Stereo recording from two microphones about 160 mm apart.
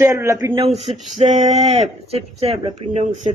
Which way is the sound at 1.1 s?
50° right (ahead or behind).